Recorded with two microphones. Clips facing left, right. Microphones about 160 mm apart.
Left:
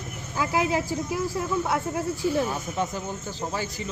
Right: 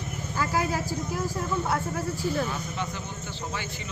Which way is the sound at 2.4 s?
40° left (ahead or behind).